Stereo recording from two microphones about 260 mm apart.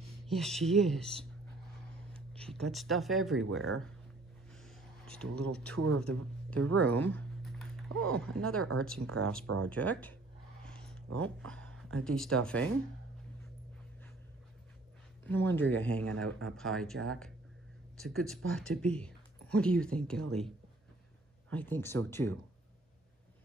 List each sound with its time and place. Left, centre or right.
0.3 s speech: centre
3.5 s speech: right
4.5 s a sound: centre
5.8 s a man's voice: right
6.8 s a sound: centre
8.1 s speech: centre
10.6 s a sound: centre
11.5 s speech: centre
15.2 s speech: centre
16.2 s a man's voice: right
16.4 s speech: centre